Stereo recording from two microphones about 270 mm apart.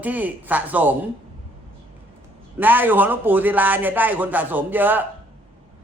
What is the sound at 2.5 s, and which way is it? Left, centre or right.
A man's voice, centre.